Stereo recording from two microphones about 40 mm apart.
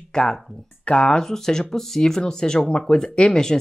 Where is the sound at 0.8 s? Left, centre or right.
Left.